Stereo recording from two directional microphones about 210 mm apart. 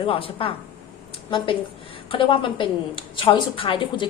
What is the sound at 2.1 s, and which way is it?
A woman's voice, 25° left (ahead or behind).